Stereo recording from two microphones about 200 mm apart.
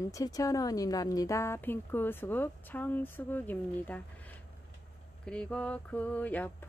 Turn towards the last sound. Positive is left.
turn(degrees=10)  # may be behind; listen again after turning